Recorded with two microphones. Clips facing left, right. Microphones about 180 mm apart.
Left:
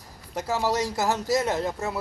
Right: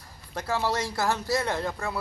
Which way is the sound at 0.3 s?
20° left (ahead or behind).